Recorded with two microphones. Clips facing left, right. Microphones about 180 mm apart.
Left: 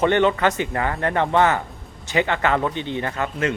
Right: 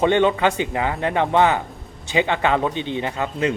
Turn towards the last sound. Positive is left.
turn(degrees=-15)  # may be behind; listen again after turning